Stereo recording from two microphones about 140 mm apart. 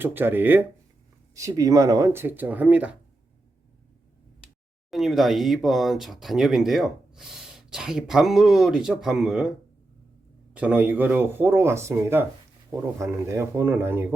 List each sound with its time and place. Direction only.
0.0 s speech: 15° right (ahead or behind)
4.9 s speech: centre (ahead or behind)
10.5 s speech: 10° right (ahead or behind)